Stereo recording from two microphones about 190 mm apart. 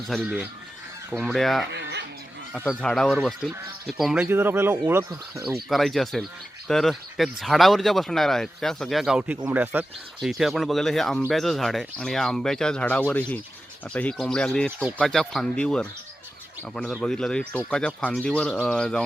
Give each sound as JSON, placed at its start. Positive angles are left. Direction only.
{"t": 0.1, "sound": "speech", "side_deg": -5}
{"t": 1.7, "sound": "a sound", "side_deg": -65}
{"t": 2.5, "sound": "speech", "side_deg": 0}
{"t": 5.6, "sound": "speech", "side_deg": 0}